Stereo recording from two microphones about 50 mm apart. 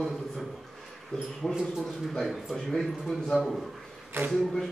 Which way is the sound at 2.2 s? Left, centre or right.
Centre.